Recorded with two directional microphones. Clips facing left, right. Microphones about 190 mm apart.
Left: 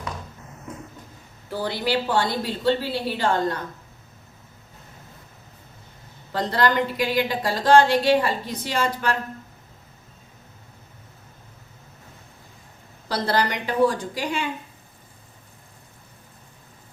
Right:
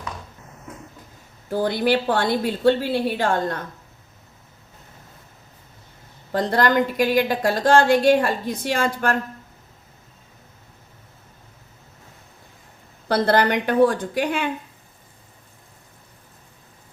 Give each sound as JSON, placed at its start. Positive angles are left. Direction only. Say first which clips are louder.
{"t": 1.5, "sound": "a woman's voice", "louder": "right 5 dB", "side_deg": -50}
{"t": 6.3, "sound": "a woman's voice", "louder": "right 3 dB", "side_deg": -50}
{"t": 13.1, "sound": "a woman's voice", "louder": "right 5 dB", "side_deg": -55}